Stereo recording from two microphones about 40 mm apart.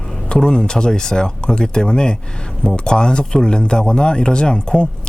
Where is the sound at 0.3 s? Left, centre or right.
Centre.